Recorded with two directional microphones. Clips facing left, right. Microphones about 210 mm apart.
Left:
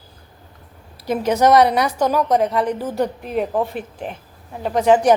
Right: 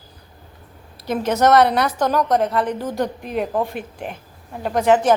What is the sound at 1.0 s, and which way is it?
A woman's voice, 10° left (ahead or behind).